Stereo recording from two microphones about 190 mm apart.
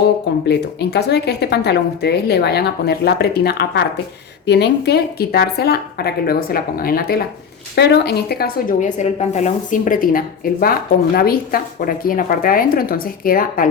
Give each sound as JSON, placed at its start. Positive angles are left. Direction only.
{"t": 0.4, "sound": "a woman's voice", "side_deg": 60}